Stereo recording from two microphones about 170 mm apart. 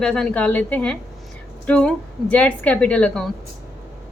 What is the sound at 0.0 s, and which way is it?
A woman's voice, 5° left (ahead or behind).